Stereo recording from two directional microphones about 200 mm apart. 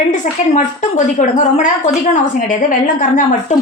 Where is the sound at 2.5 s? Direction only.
40° left (ahead or behind).